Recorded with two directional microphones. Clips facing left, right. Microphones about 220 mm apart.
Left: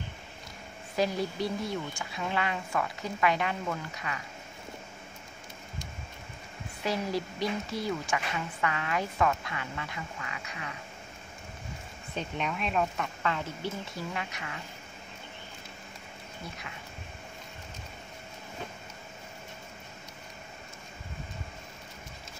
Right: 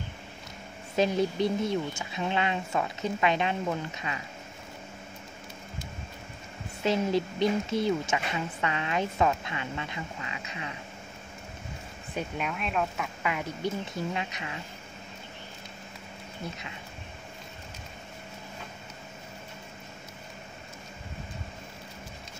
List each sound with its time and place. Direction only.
0.9 s a woman's voice: 20° right (ahead or behind)
6.8 s a woman's voice: 25° right (ahead or behind)
12.2 s speech: 5° right (ahead or behind); by 14.6 s 20° right (ahead or behind)